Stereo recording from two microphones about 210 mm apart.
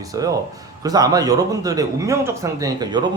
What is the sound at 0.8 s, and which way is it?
A man's voice, 15° right (ahead or behind).